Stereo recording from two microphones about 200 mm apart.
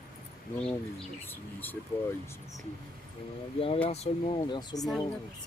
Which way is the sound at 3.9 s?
30° left (ahead or behind).